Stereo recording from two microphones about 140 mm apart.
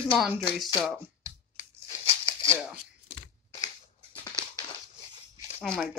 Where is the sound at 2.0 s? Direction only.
40° left (ahead or behind).